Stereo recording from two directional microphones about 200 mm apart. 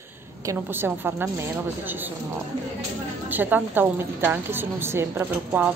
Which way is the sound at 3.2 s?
10° right (ahead or behind).